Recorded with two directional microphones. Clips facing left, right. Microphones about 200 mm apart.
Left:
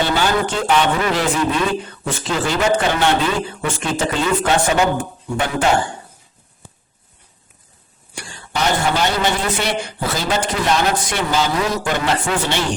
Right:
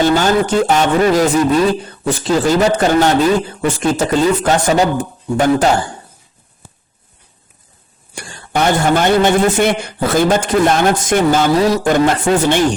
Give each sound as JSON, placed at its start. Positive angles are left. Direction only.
{"t": 0.0, "sound": "speech", "side_deg": -45}
{"t": 8.1, "sound": "a woman's voice", "side_deg": -50}
{"t": 11.5, "sound": "a woman's voice", "side_deg": -40}